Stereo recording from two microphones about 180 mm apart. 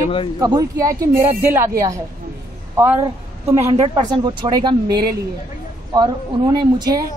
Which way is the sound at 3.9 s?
25° right (ahead or behind).